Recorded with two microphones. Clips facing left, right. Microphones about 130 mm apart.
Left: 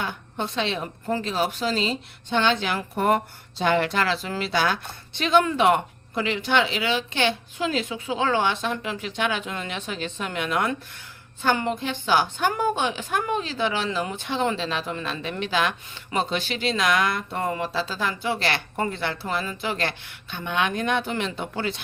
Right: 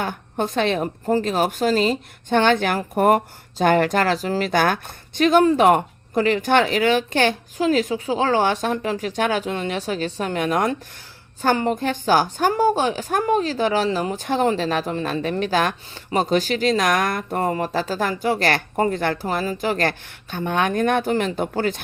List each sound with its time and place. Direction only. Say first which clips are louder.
0.0 s a woman's voice: right 5 dB; 45° right (ahead or behind)